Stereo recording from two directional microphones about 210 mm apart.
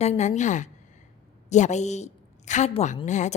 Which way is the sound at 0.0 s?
30° left (ahead or behind).